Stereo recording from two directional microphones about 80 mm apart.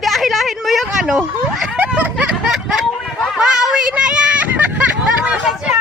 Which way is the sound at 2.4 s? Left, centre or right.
Centre.